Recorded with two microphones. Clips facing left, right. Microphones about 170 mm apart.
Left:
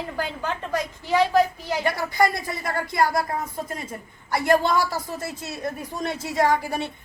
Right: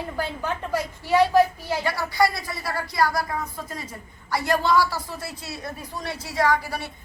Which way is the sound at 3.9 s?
50° left (ahead or behind).